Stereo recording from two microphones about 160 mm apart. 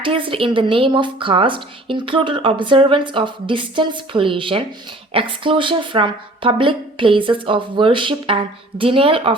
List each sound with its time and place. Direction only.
0.0 s a woman's voice: 35° right (ahead or behind)